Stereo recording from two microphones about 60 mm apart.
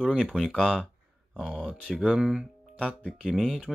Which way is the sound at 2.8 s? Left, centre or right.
Centre.